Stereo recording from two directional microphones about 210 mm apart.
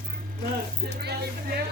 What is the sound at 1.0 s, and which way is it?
Speech, 50° right (ahead or behind).